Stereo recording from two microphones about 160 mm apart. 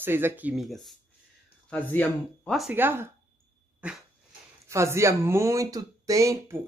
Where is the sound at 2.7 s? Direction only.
15° right (ahead or behind).